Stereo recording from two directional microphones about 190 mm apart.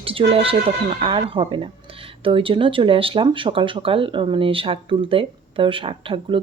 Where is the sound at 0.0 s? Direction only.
30° right (ahead or behind).